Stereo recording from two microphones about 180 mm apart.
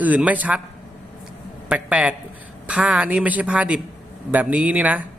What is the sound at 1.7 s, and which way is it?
A man's voice, 5° right (ahead or behind).